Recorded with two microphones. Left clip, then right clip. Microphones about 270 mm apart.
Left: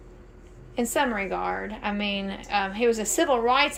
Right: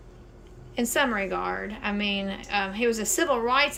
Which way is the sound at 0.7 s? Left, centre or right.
Centre.